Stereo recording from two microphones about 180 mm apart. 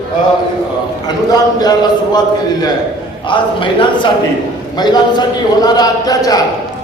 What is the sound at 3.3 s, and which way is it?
A man's voice, 25° left (ahead or behind).